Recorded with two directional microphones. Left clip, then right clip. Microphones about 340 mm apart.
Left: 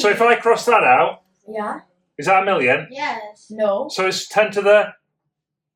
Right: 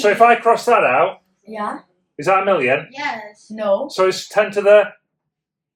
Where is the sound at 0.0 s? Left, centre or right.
Centre.